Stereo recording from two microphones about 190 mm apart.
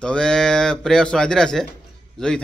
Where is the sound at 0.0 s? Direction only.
5° left (ahead or behind).